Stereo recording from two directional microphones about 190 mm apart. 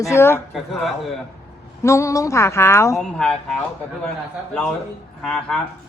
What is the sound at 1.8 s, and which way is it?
Speech, 15° left (ahead or behind).